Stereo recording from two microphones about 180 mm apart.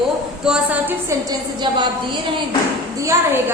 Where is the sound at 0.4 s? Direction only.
5° right (ahead or behind).